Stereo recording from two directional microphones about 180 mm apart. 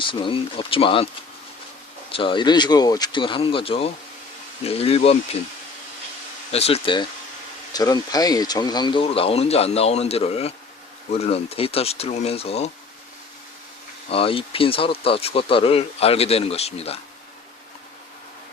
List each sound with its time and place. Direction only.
0.0 s speech: 30° left (ahead or behind)
2.1 s speech: 25° left (ahead or behind)
6.5 s speech: 35° left (ahead or behind)
14.1 s speech: 30° left (ahead or behind)